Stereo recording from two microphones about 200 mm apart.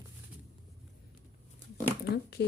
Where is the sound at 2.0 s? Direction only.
55° left (ahead or behind).